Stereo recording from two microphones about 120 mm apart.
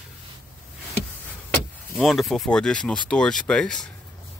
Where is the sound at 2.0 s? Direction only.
Centre (ahead or behind).